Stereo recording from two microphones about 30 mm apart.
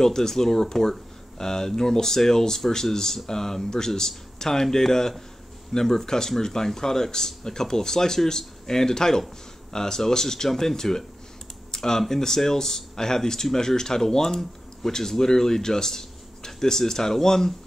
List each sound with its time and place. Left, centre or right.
0.0 s speech: centre
11.7 s computer keyboard: centre
12.1 s speech: centre